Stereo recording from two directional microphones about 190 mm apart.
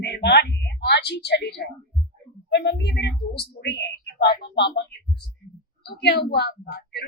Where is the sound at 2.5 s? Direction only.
60° left (ahead or behind).